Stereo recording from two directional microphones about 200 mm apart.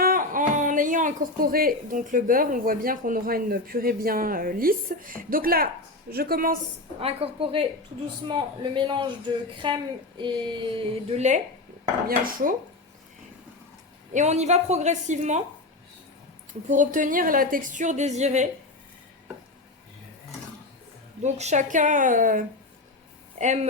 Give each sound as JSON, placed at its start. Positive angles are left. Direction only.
{"t": 0.0, "sound": "a woman's voice", "side_deg": -45}
{"t": 7.0, "sound": "speech", "side_deg": -30}
{"t": 10.8, "sound": "a woman's voice", "side_deg": -30}
{"t": 12.0, "sound": "a woman's voice", "side_deg": -45}
{"t": 14.1, "sound": "a woman's voice", "side_deg": -35}
{"t": 16.6, "sound": "a woman's voice", "side_deg": -40}
{"t": 21.2, "sound": "a woman's voice", "side_deg": -35}